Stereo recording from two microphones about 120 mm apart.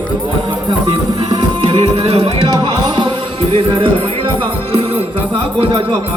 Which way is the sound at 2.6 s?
35° right (ahead or behind).